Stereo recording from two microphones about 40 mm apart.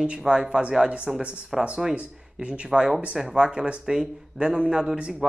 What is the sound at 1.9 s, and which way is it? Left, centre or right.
Speech, right.